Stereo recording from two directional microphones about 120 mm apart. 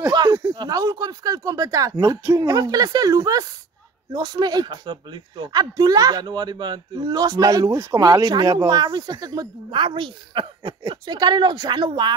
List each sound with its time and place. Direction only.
0.0 s speech: 35° right (ahead or behind)